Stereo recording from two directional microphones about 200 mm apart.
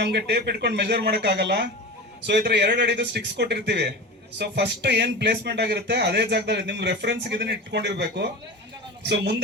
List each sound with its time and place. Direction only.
0.0 s speech: 55° right (ahead or behind)